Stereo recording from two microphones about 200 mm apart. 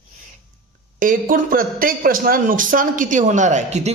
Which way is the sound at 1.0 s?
45° right (ahead or behind).